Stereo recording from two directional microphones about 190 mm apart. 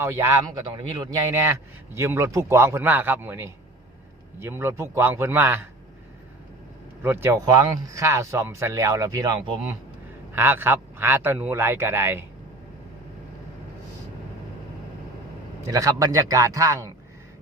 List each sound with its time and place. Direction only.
0.0 s a man's voice: 15° right (ahead or behind)
7.0 s a man's voice: 10° right (ahead or behind)
15.6 s a man's voice: 15° right (ahead or behind)